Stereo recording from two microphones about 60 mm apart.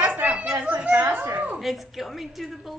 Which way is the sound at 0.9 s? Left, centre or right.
Right.